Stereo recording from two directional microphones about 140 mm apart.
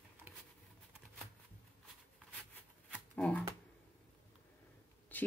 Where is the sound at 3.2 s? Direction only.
10° left (ahead or behind).